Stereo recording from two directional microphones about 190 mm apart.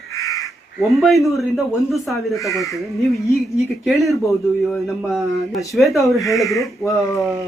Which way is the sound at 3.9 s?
Centre (ahead or behind).